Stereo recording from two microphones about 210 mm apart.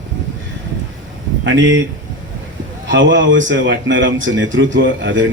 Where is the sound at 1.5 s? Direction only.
60° right (ahead or behind).